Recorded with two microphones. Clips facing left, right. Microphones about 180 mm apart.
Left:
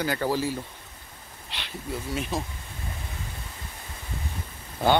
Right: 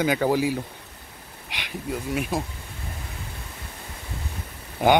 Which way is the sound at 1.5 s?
10° right (ahead or behind).